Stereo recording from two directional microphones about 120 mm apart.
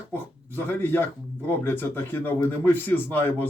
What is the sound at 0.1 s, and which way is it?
Speech, 15° left (ahead or behind).